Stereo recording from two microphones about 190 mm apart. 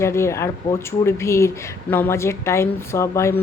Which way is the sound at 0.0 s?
15° left (ahead or behind).